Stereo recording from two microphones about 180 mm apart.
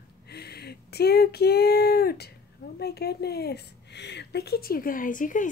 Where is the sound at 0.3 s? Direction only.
65° left (ahead or behind).